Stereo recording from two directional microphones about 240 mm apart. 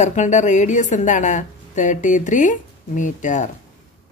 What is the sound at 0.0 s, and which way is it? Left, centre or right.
A woman's voice, left.